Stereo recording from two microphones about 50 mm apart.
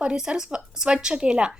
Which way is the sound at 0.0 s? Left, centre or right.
Centre.